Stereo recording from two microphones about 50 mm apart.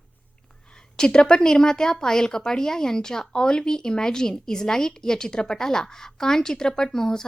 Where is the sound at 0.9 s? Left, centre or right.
Centre.